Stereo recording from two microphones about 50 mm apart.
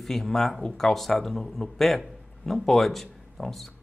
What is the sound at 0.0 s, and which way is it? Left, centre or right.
A man's voice, centre.